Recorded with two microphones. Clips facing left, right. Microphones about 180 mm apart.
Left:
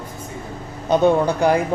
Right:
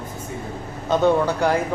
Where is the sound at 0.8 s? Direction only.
15° left (ahead or behind).